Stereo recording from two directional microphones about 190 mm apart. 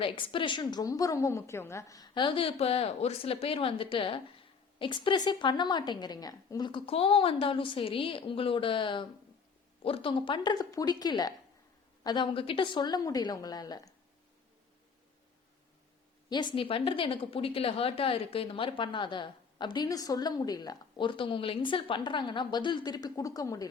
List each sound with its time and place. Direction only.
0.0 s a woman's voice: 25° left (ahead or behind)
16.6 s a woman's voice: 30° left (ahead or behind)